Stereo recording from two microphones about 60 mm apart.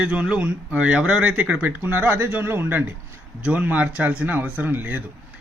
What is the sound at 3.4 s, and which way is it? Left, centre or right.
Speech, right.